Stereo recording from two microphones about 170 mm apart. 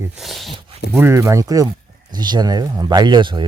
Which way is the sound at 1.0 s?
15° right (ahead or behind).